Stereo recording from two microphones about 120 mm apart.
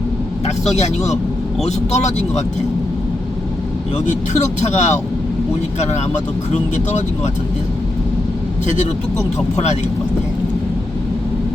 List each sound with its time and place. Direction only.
0.4 s speech: 65° left (ahead or behind)
4.0 s speech: 75° left (ahead or behind)
8.6 s speech: 80° left